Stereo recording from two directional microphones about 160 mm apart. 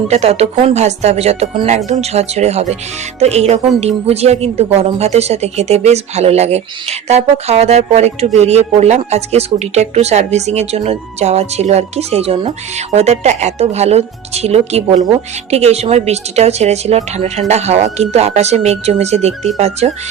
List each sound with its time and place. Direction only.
0.1 s speech: 40° right (ahead or behind)